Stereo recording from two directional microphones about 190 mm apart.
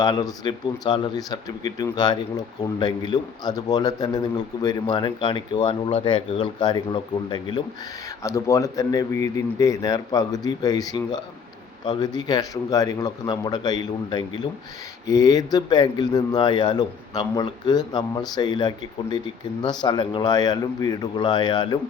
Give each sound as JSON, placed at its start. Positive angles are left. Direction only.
{"t": 0.0, "sound": "speech", "side_deg": 20}